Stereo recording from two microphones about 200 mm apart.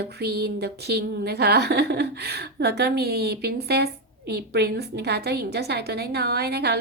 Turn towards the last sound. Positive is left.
turn(degrees=-55)  # may be behind; listen again after turning